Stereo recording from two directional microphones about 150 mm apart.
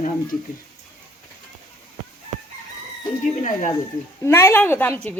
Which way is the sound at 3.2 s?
60° left (ahead or behind).